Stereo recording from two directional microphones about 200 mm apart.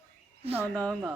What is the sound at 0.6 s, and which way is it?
Speech, 5° left (ahead or behind).